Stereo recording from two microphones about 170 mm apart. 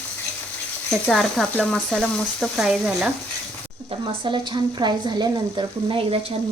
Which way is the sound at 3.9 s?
30° right (ahead or behind).